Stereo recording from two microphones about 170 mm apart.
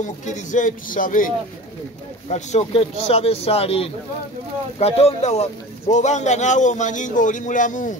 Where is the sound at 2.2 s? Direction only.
40° left (ahead or behind).